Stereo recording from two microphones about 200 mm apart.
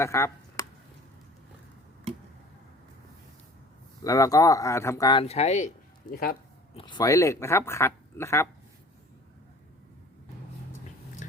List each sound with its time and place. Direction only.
0.0 s speech: 15° left (ahead or behind)
4.0 s speech: 15° left (ahead or behind); by 6.3 s 45° left (ahead or behind)
6.7 s speech: 25° left (ahead or behind)
11.2 s a sound: 40° left (ahead or behind)